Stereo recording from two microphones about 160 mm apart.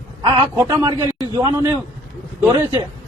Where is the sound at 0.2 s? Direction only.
30° right (ahead or behind).